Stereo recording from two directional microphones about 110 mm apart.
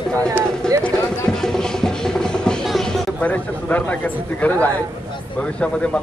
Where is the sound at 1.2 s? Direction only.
5° left (ahead or behind).